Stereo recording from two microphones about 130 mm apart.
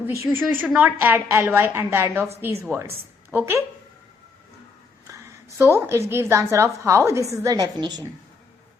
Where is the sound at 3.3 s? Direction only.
20° right (ahead or behind).